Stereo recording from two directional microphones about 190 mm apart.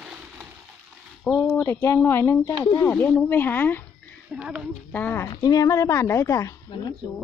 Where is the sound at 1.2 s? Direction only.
5° left (ahead or behind).